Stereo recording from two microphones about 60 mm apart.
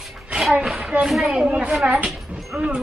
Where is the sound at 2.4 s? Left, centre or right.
Centre.